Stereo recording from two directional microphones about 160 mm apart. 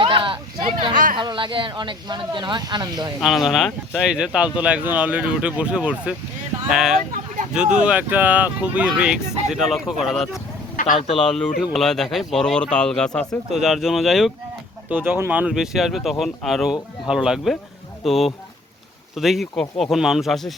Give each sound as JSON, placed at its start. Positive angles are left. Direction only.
{"t": 0.0, "sound": "a sound", "side_deg": -30}
{"t": 1.1, "sound": "speech", "side_deg": -30}
{"t": 3.2, "sound": "speech", "side_deg": 0}
{"t": 14.8, "sound": "speech", "side_deg": -10}